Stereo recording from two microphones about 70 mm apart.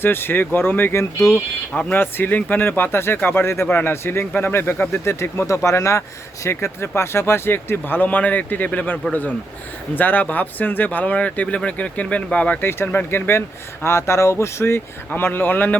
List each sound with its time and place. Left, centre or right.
0.0 s speech: left
15.1 s speech: left